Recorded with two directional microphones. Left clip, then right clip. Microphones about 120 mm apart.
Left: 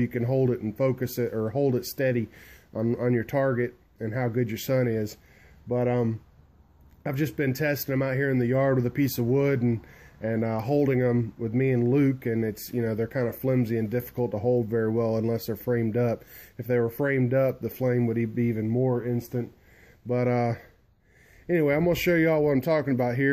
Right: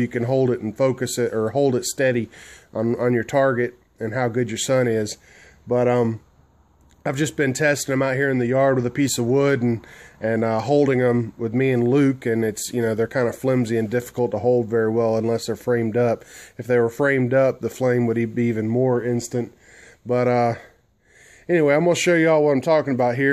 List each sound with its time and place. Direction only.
0.0 s speech: 20° right (ahead or behind); by 19.4 s 45° right (ahead or behind)
20.1 s speech: 15° right (ahead or behind)